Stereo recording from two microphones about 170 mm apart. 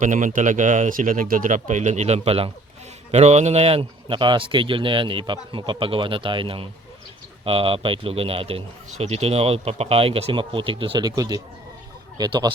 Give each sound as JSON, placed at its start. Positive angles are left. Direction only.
{"t": 0.0, "sound": "speech", "side_deg": -50}